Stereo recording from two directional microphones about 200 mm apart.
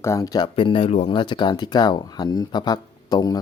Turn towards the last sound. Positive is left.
turn(degrees=20)  # may be behind; listen again after turning